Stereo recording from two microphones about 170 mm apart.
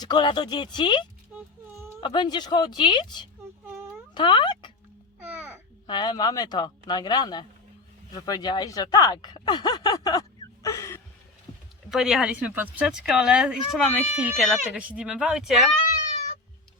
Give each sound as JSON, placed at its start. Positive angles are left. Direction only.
{"t": 0.0, "sound": "speech", "side_deg": 25}
{"t": 1.3, "sound": "a sound", "side_deg": -10}
{"t": 2.0, "sound": "speech", "side_deg": 30}
{"t": 5.2, "sound": "a sound", "side_deg": -10}
{"t": 5.9, "sound": "speech", "side_deg": 25}
{"t": 11.9, "sound": "speech", "side_deg": 0}